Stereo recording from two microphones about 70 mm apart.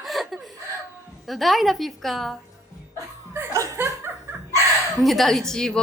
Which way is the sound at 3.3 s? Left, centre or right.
Right.